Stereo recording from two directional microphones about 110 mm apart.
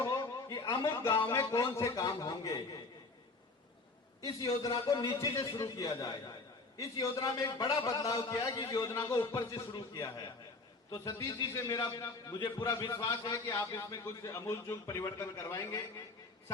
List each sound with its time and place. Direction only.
0.0 s a sound: 35° left (ahead or behind)
1.3 s a man's voice: 30° left (ahead or behind)
4.2 s a man's voice: 35° left (ahead or behind)